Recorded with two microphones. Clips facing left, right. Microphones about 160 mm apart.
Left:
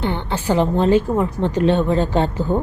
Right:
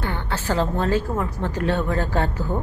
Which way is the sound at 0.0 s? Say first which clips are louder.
Left 5 dB; 20° left (ahead or behind).